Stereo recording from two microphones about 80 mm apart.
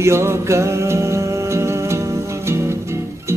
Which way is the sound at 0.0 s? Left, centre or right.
Right.